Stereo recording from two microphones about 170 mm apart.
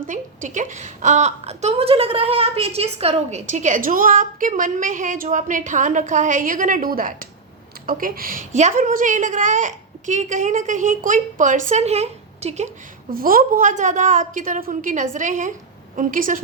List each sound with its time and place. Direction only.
0.1 s a woman's voice: 45° right (ahead or behind)
13.1 s a woman's voice: 60° right (ahead or behind)